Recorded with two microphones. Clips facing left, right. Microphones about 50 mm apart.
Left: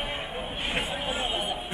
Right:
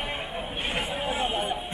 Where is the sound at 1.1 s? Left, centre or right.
Right.